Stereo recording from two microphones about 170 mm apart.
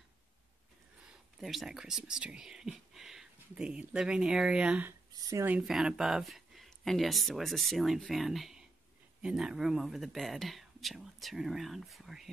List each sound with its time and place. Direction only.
1.4 s speech: centre (ahead or behind)
5.1 s speech: 20° right (ahead or behind)
5.6 s speech: centre (ahead or behind)